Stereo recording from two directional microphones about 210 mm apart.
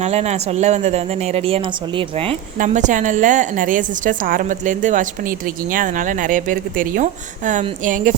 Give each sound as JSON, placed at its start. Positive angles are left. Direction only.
{"t": 0.0, "sound": "a woman's voice", "side_deg": -30}
{"t": 2.6, "sound": "a woman's voice", "side_deg": -35}